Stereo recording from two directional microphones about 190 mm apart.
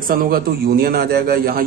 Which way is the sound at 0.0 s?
50° right (ahead or behind).